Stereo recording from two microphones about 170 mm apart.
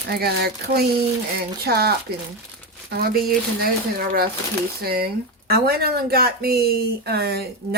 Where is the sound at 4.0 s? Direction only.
60° right (ahead or behind).